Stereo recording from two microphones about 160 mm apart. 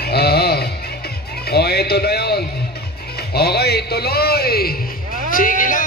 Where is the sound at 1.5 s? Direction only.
85° left.